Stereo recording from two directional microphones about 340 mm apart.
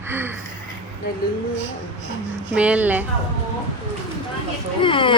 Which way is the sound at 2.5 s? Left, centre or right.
Centre.